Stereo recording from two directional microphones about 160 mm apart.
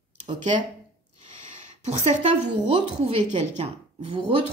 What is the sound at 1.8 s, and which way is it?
A woman's voice, 45° right (ahead or behind).